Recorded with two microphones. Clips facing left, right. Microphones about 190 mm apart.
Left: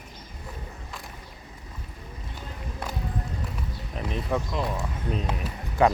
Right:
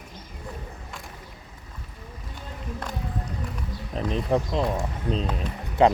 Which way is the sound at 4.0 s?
35° right (ahead or behind).